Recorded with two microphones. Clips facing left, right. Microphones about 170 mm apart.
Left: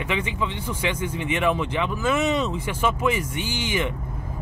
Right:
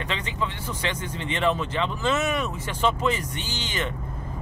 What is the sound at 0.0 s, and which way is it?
Speech, 10° left (ahead or behind).